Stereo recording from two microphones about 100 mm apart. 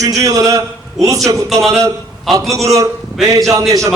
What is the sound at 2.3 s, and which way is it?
Speech, centre (ahead or behind).